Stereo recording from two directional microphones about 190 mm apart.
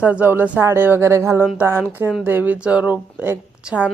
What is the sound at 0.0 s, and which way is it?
Speech, 10° right (ahead or behind).